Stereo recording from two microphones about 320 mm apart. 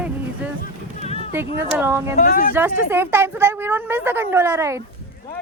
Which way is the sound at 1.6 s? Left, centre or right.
Centre.